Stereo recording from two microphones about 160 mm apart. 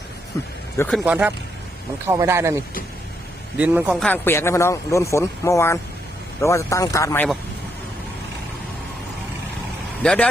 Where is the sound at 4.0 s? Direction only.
10° left (ahead or behind).